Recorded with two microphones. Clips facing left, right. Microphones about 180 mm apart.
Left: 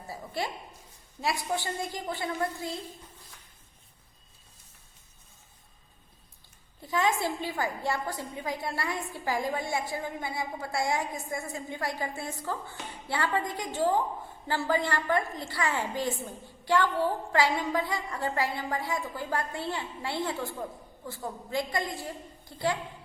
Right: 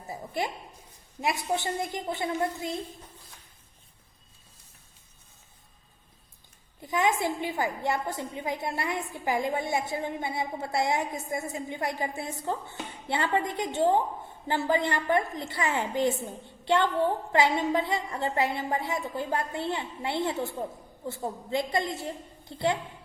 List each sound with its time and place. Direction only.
0.1 s a woman's voice: 20° right (ahead or behind)
6.8 s a woman's voice: 20° right (ahead or behind)